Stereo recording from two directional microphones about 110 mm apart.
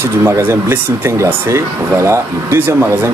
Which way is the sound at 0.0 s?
20° right (ahead or behind).